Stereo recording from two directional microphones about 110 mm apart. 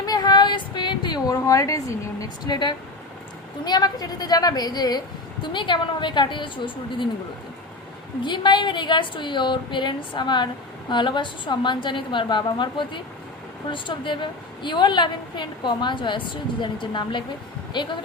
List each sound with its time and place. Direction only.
0.0 s a sound: 35° left (ahead or behind)
3.6 s a woman's voice: 40° left (ahead or behind)
8.2 s a woman's voice: 45° left (ahead or behind)